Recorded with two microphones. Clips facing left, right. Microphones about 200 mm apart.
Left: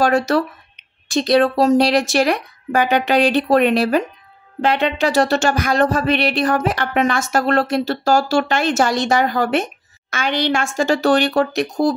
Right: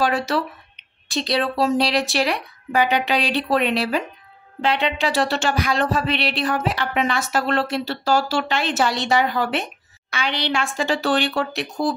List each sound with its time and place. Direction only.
0.0 s speech: 45° left (ahead or behind)